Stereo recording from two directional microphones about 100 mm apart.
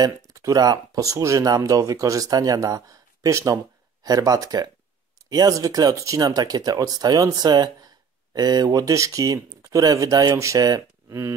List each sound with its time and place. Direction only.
0.0 s speech: 35° right (ahead or behind)